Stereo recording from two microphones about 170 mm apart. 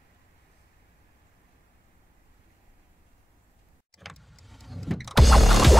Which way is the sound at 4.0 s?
Centre (ahead or behind).